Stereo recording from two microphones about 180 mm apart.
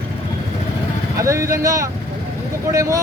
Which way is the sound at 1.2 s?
15° right (ahead or behind).